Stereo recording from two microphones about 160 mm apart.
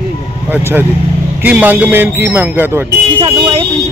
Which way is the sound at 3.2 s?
35° right (ahead or behind).